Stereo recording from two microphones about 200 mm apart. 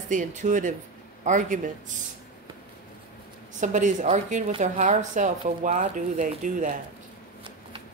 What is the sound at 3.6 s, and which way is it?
A woman's voice, 40° right (ahead or behind).